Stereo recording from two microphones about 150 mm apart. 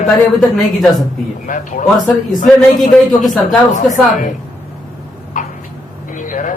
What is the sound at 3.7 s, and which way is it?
Speech, 55° left (ahead or behind).